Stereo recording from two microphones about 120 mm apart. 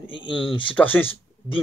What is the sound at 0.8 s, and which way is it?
Speech, 15° left (ahead or behind).